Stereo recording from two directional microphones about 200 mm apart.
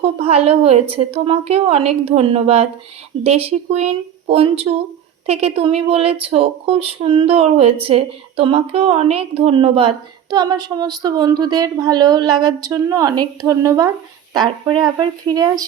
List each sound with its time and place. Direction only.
0.0 s speech: 30° right (ahead or behind)